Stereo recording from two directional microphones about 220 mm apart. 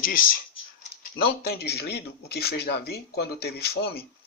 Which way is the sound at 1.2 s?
45° left (ahead or behind).